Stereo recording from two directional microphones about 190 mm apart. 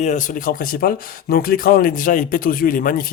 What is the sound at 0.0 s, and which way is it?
Speech, 40° left (ahead or behind).